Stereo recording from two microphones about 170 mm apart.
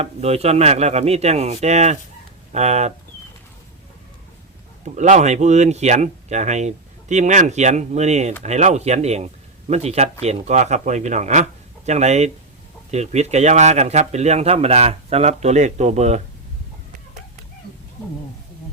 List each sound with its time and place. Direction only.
0.0 s speech: 40° right (ahead or behind)
4.9 s speech: 45° right (ahead or behind)